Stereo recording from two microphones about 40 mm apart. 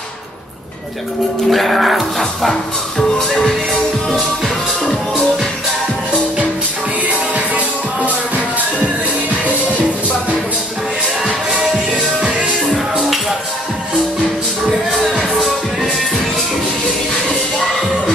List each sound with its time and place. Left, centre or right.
1.5 s speech: centre
7.1 s music: right
12.2 s music: right
12.5 s music: centre
14.7 s music: centre